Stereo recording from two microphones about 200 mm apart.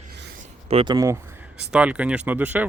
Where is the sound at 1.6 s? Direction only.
5° right (ahead or behind).